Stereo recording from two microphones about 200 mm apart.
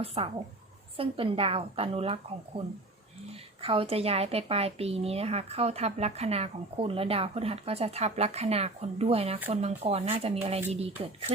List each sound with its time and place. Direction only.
0.0 s a woman's voice: 30° right (ahead or behind)
3.6 s speech: 30° right (ahead or behind)